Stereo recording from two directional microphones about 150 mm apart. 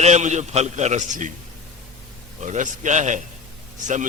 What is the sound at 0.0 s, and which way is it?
A man's voice, 50° right (ahead or behind).